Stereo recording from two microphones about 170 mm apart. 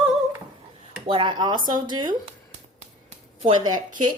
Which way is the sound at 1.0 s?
30° right (ahead or behind).